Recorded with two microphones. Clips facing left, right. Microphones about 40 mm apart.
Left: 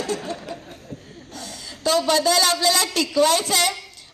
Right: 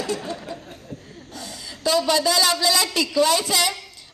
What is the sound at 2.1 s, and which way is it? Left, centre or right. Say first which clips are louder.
A woman's voice: left 2 dB; left.